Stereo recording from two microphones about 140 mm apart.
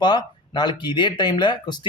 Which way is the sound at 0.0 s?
30° left (ahead or behind).